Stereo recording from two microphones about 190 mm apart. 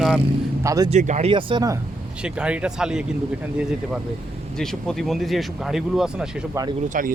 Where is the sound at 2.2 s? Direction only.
5° right (ahead or behind).